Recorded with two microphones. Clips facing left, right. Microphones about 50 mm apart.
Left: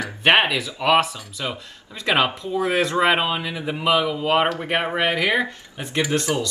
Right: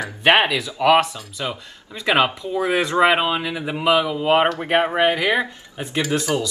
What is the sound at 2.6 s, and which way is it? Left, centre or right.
Speech, centre.